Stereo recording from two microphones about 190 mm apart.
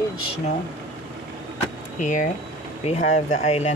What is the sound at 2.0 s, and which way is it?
Speech, 40° left (ahead or behind).